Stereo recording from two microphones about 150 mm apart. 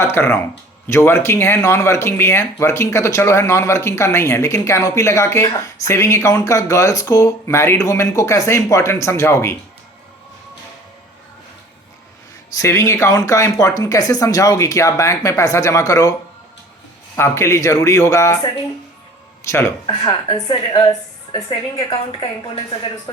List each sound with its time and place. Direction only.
0.0 s speech: 15° left (ahead or behind)
12.5 s speech: 20° left (ahead or behind)
17.2 s speech: 15° left (ahead or behind)
19.4 s a woman's voice: 20° left (ahead or behind)